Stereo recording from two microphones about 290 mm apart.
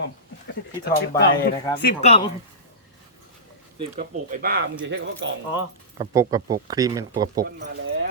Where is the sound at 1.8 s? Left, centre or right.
Left.